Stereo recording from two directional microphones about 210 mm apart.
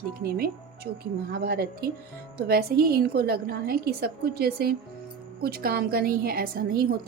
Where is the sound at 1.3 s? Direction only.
45° right (ahead or behind).